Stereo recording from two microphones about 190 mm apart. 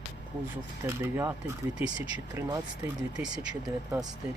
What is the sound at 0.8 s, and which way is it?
Speech, 15° right (ahead or behind).